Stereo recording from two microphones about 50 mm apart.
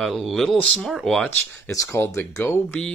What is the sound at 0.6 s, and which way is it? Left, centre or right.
Speech, left.